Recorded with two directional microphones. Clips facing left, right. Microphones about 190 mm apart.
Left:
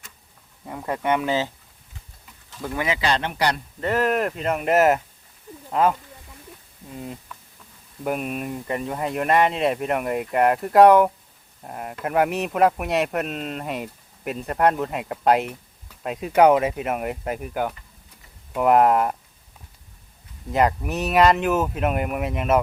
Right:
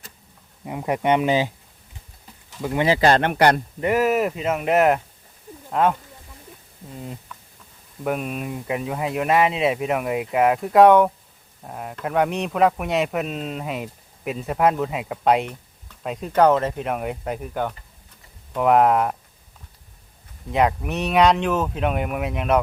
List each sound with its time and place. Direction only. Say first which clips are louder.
0.6 s speech: right 4 dB; 15° right (ahead or behind)
2.7 s speech: right 6 dB; 30° right (ahead or behind)
3.0 s speech: right 8 dB; 55° right (ahead or behind)
3.8 s speech: right 2 dB; 10° right (ahead or behind)
7.0 s speech: left 1 dB; centre (ahead or behind)
20.5 s speech: even; centre (ahead or behind)